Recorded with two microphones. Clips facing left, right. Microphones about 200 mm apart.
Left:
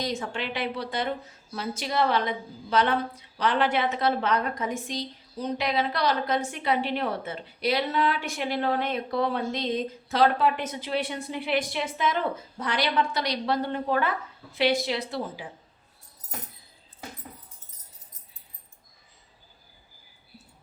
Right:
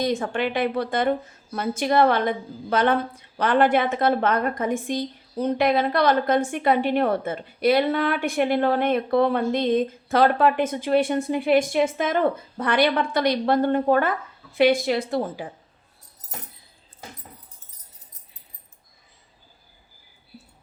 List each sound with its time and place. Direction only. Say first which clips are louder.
0.0 s a woman's voice: right 7 dB; 55° right (ahead or behind)